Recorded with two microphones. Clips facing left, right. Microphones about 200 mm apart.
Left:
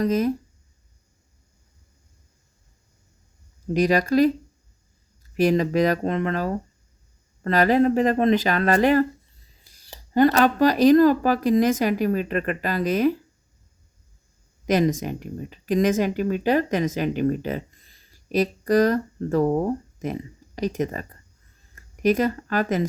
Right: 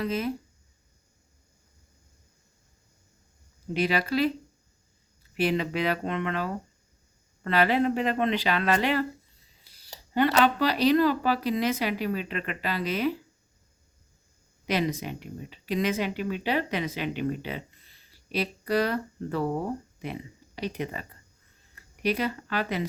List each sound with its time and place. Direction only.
0.0 s speech: 45° left (ahead or behind)
3.8 s speech: 45° left (ahead or behind)
14.7 s speech: 45° left (ahead or behind)